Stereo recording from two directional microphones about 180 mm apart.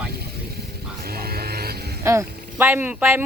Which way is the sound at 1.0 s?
60° right (ahead or behind).